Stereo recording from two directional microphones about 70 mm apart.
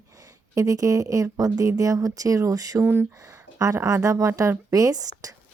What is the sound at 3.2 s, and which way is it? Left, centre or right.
A woman's voice, right.